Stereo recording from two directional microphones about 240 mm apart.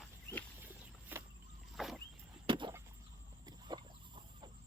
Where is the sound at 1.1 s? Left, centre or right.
Centre.